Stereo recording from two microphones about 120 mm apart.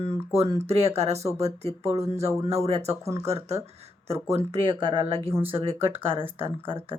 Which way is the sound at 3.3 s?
60° right (ahead or behind).